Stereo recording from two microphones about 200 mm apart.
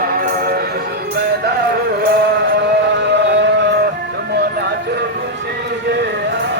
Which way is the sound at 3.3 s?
60° right (ahead or behind).